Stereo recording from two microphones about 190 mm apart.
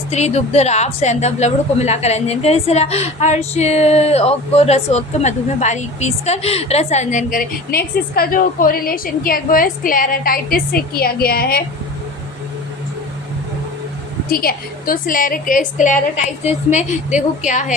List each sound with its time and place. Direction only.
0.1 s a woman's voice: 35° left (ahead or behind); by 11.6 s 50° left (ahead or behind)
14.3 s a woman's voice: 50° left (ahead or behind)